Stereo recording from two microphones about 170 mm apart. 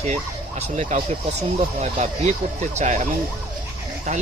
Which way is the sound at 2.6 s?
45° right (ahead or behind).